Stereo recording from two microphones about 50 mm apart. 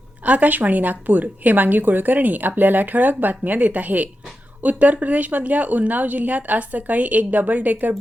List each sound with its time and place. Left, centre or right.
0.3 s a woman's voice: right